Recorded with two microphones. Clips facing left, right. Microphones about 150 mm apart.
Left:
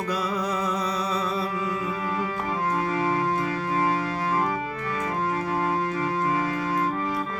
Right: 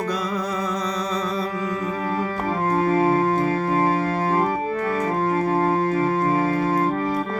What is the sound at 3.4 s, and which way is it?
Music, 45° right (ahead or behind).